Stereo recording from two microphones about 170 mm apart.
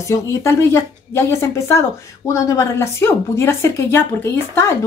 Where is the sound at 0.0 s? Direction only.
15° left (ahead or behind).